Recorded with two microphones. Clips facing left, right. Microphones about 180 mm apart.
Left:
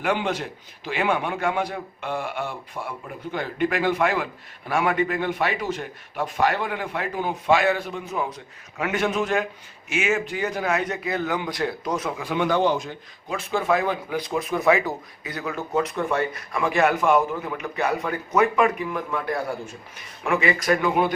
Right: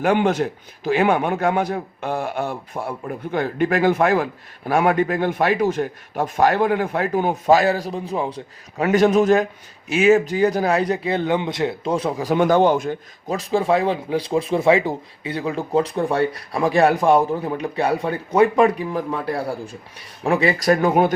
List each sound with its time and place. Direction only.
0.0 s speech: 50° right (ahead or behind)
13.3 s speech: 35° right (ahead or behind)